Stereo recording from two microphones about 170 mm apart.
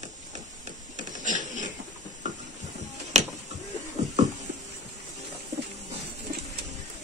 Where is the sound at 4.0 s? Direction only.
40° right (ahead or behind).